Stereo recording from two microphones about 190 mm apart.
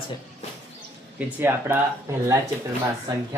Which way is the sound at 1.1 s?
10° right (ahead or behind).